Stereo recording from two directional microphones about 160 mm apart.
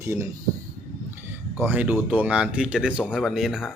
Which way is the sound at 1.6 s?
10° right (ahead or behind).